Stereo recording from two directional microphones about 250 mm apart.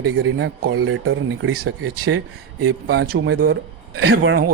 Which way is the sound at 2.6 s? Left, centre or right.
Right.